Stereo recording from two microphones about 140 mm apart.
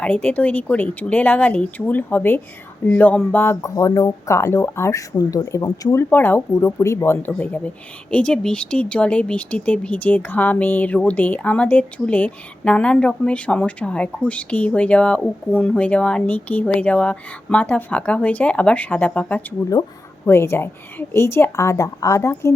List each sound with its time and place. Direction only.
0.0 s speech: 10° left (ahead or behind)